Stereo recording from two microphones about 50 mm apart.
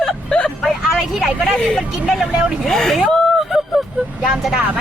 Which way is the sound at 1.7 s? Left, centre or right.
Centre.